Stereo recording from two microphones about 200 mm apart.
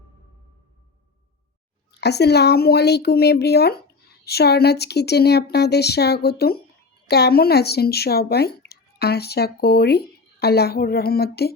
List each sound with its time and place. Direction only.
2.0 s speech: 55° left (ahead or behind)